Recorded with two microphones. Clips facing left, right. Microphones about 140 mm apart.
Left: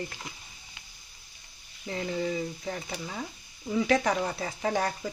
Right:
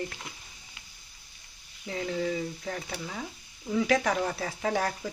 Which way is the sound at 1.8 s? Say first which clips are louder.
Even; centre (ahead or behind).